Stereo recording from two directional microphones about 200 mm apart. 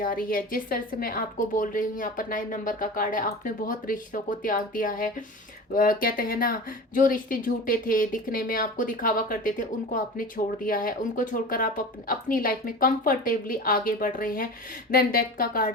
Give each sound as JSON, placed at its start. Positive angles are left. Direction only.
{"t": 0.0, "sound": "speech", "side_deg": 45}